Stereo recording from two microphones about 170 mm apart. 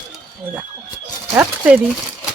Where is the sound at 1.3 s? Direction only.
10° right (ahead or behind).